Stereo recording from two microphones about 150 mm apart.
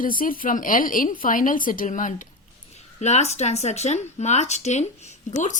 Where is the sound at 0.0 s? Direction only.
70° left (ahead or behind).